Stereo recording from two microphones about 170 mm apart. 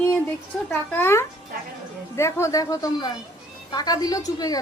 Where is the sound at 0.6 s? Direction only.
15° left (ahead or behind).